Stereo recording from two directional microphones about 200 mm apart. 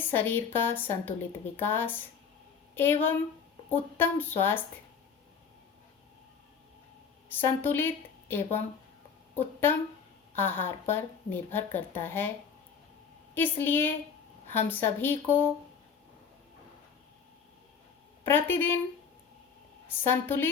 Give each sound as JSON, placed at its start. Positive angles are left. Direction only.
{"t": 0.1, "sound": "speech", "side_deg": 10}
{"t": 7.3, "sound": "a woman's voice", "side_deg": 10}
{"t": 13.3, "sound": "speech", "side_deg": 10}
{"t": 18.2, "sound": "a woman's voice", "side_deg": 10}
{"t": 20.1, "sound": "speech", "side_deg": 10}